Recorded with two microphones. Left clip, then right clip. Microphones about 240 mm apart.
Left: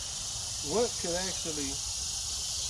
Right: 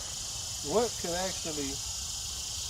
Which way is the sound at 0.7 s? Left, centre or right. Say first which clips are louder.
Right 1 dB; centre.